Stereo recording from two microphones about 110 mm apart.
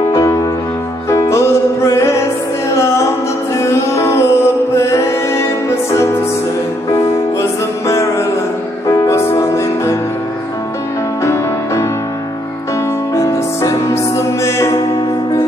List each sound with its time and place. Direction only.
0.1 s music: 30° left (ahead or behind)
7.8 s music: 25° left (ahead or behind)
11.2 s music: 25° left (ahead or behind)
13.1 s music: 30° left (ahead or behind)